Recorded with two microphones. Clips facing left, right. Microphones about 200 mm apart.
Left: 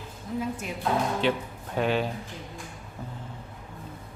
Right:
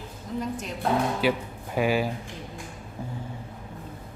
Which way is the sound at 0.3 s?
10° left (ahead or behind).